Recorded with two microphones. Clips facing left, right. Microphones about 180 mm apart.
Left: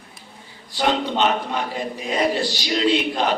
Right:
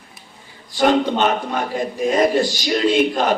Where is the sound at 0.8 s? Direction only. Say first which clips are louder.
Right 4 dB; 45° right (ahead or behind).